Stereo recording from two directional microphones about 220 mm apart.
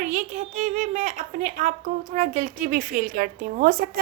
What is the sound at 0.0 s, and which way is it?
A child's voice, 35° right (ahead or behind).